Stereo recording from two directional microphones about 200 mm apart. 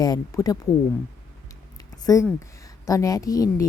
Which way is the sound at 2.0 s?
15° left (ahead or behind).